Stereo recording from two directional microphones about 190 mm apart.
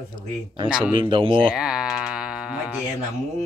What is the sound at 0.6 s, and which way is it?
Speech, 5° right (ahead or behind).